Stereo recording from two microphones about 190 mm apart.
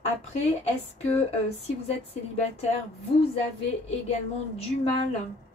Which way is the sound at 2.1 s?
30° left (ahead or behind).